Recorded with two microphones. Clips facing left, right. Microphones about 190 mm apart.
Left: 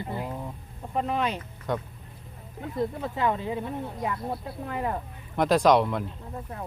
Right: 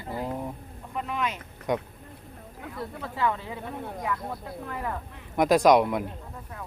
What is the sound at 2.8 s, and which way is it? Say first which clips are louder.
Speech: left 4 dB; 20° left (ahead or behind).